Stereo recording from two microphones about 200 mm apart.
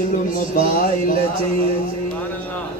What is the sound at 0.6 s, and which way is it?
Speech, 45° left (ahead or behind).